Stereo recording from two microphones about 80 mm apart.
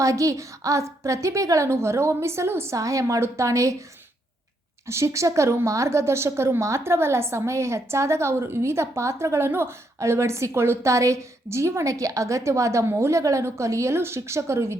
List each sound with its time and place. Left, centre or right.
0.0 s a woman's voice: right
2.7 s a woman's voice: right
4.9 s a woman's voice: right